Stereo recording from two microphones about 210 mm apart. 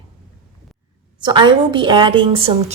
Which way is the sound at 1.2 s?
20° right (ahead or behind).